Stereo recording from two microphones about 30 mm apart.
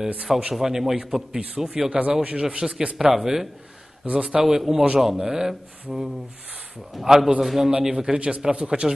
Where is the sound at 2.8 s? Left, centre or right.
Right.